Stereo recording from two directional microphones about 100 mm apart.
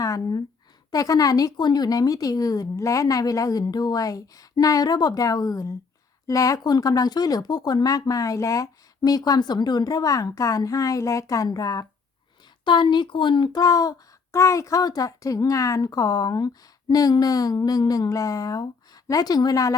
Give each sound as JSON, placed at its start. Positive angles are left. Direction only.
{"t": 0.0, "sound": "speech", "side_deg": 40}
{"t": 12.6, "sound": "speech", "side_deg": 50}
{"t": 13.5, "sound": "speech", "side_deg": 40}